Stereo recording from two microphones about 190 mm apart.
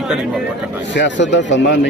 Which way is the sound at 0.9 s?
65° left (ahead or behind).